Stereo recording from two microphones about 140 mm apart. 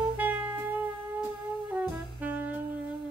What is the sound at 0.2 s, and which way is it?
Music, 10° right (ahead or behind).